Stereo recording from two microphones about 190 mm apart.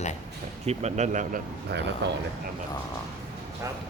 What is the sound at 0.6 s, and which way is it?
Speech, 35° right (ahead or behind).